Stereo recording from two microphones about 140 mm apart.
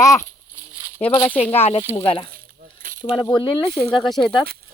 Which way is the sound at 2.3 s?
80° right.